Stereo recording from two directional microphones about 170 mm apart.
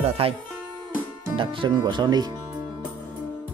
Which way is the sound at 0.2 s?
35° right (ahead or behind).